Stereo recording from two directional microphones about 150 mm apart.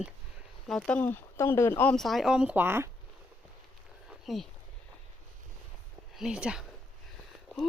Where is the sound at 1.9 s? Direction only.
Centre (ahead or behind); by 2.9 s 15° right (ahead or behind).